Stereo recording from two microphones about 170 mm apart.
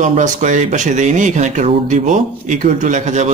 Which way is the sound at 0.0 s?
45° right (ahead or behind).